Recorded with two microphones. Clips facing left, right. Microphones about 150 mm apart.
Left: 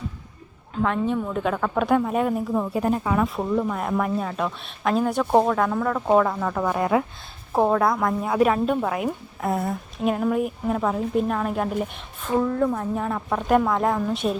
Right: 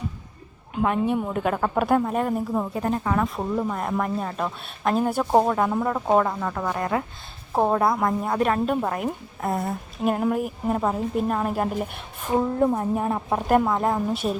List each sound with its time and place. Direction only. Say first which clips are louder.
0.7 s a woman's voice: right 1 dB; 10° right (ahead or behind)
2.7 s a woman's voice: left 3 dB; 10° left (ahead or behind); by 6.0 s 10° right (ahead or behind)
6.1 s a woman's voice: left 3 dB; centre (ahead or behind)
7.5 s a woman's voice: left 1 dB; 5° right (ahead or behind)
12.3 s speech: even; 25° right (ahead or behind)
13.5 s a woman's voice: left 1 dB; 5° right (ahead or behind)